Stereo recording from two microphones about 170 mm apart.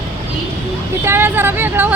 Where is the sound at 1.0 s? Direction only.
15° right (ahead or behind).